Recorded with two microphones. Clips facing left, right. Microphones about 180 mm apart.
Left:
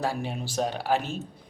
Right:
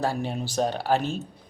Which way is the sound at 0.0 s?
5° left (ahead or behind).